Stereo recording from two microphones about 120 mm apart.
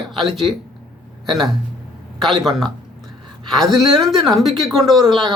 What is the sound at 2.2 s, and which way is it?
Speech, centre (ahead or behind).